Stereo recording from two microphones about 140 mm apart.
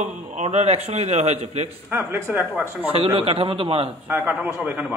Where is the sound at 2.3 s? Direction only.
15° right (ahead or behind).